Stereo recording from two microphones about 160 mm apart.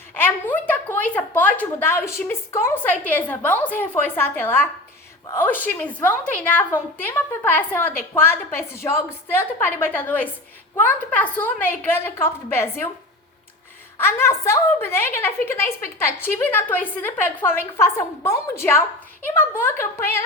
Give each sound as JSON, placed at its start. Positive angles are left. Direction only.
{"t": 0.1, "sound": "a woman's voice", "side_deg": 10}
{"t": 14.0, "sound": "a woman's voice", "side_deg": 15}